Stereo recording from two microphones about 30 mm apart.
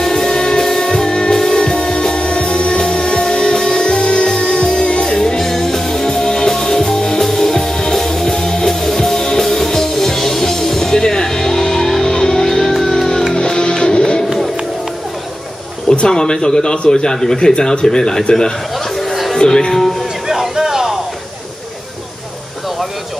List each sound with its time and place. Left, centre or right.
0.0 s music: centre
5.4 s music: centre
13.4 s music: left
15.9 s speech: left
17.2 s speech: centre
20.2 s a sound: centre